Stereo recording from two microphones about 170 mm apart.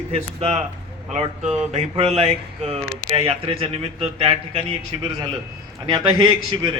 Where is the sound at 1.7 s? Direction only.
35° right (ahead or behind).